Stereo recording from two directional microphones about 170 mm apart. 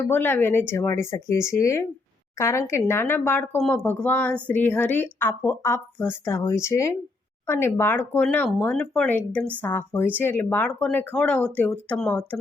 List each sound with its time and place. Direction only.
0.0 s a woman's voice: 10° left (ahead or behind)